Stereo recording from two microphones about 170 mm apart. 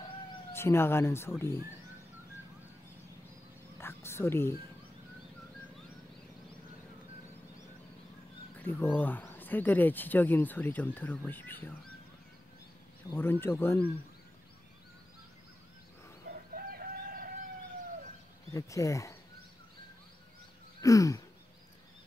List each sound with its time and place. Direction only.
0.5 s speech: 15° left (ahead or behind)
3.7 s whispering: 15° left (ahead or behind)
8.5 s speech: 10° left (ahead or behind)
13.1 s speech: 15° left (ahead or behind)
16.3 s chicken: 60° right (ahead or behind)
18.5 s speech: 20° left (ahead or behind)
20.8 s speech: 20° left (ahead or behind)